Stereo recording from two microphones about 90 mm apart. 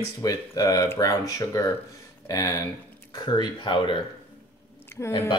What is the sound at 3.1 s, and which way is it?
Speech, 55° left (ahead or behind).